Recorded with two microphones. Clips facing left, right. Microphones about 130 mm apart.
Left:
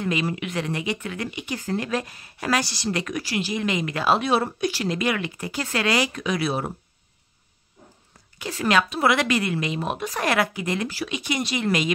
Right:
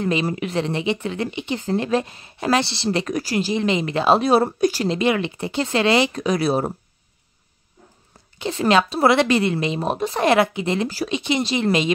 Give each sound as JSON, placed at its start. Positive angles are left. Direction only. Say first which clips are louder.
{"t": 0.0, "sound": "speech", "louder": "right 4 dB", "side_deg": -35}
{"t": 4.8, "sound": "speech", "louder": "right 5 dB", "side_deg": -25}
{"t": 6.2, "sound": "speech", "louder": "right 5 dB", "side_deg": -40}
{"t": 8.4, "sound": "speech", "louder": "right 4 dB", "side_deg": -25}